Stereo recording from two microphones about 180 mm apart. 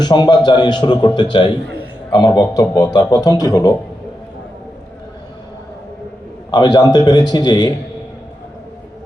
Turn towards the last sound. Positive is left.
turn(degrees=25)  # may be behind; listen again after turning